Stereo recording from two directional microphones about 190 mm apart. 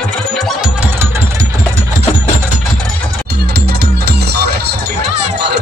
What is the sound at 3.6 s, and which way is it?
Music, 55° right (ahead or behind).